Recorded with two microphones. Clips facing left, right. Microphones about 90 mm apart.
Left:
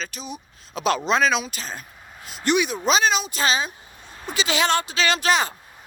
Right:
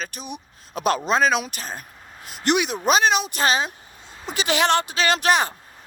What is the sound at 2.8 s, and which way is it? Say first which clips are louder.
Speech: right 5 dB; 55° right (ahead or behind).